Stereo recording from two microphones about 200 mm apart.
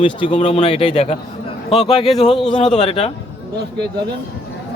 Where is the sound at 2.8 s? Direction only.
30° left (ahead or behind).